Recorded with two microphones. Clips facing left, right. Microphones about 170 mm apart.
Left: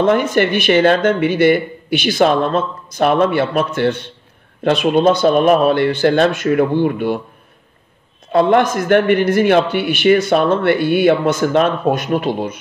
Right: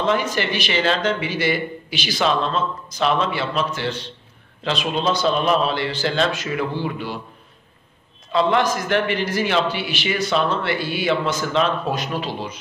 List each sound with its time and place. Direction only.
0.0 s a man's voice: 55° left (ahead or behind)
8.3 s a man's voice: 55° left (ahead or behind)